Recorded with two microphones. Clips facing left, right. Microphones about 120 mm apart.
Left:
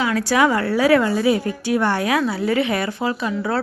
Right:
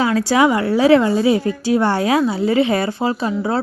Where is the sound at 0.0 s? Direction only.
25° right (ahead or behind).